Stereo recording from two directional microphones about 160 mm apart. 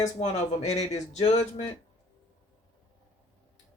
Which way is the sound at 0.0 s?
45° left (ahead or behind).